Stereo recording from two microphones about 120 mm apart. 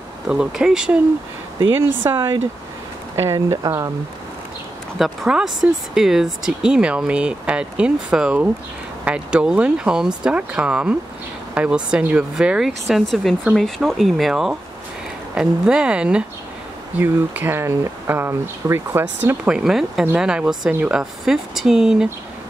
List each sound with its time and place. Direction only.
0.3 s speech: 5° right (ahead or behind)
1.8 s speech: 20° right (ahead or behind)
3.3 s speech: 25° right (ahead or behind)
4.9 s speech: centre (ahead or behind); by 19.3 s 20° right (ahead or behind)
19.4 s speech: 5° right (ahead or behind)